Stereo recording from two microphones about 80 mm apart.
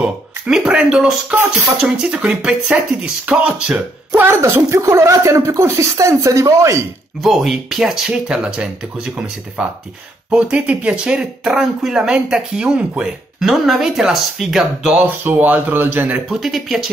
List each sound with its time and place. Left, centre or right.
0.0 s speech: centre
4.4 s speech: right
7.2 s speech: centre; by 16.2 s right
16.3 s speech: centre